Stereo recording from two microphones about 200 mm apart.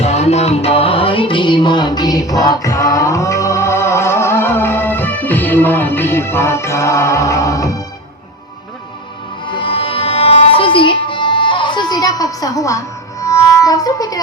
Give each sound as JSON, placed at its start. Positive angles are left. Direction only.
{"t": 0.0, "sound": "music", "side_deg": 35}
{"t": 9.5, "sound": "music", "side_deg": 25}